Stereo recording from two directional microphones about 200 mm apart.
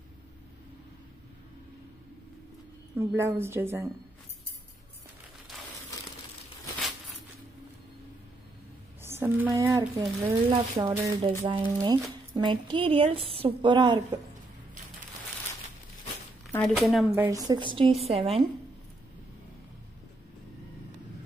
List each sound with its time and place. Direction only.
3.0 s speech: 10° right (ahead or behind)
9.0 s a woman's voice: 10° right (ahead or behind)
16.5 s speech: centre (ahead or behind)
17.1 s a woman's voice: 15° right (ahead or behind)